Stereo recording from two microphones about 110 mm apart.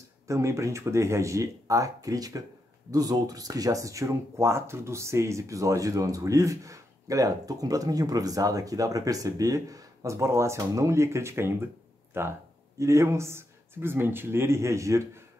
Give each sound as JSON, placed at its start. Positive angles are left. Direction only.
{"t": 0.3, "sound": "speech", "side_deg": -25}